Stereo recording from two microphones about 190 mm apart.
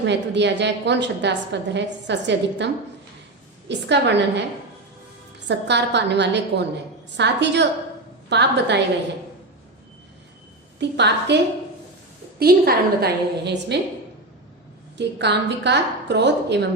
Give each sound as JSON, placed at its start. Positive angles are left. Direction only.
{"t": 0.0, "sound": "a woman's voice", "side_deg": -65}
{"t": 3.7, "sound": "a woman's voice", "side_deg": -65}
{"t": 5.5, "sound": "a woman's voice", "side_deg": -65}
{"t": 10.8, "sound": "a woman's voice", "side_deg": -65}
{"t": 12.4, "sound": "a woman's voice", "side_deg": -55}
{"t": 14.9, "sound": "a woman's voice", "side_deg": -65}